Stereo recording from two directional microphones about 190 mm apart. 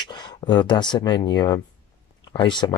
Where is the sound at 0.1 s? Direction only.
25° left (ahead or behind).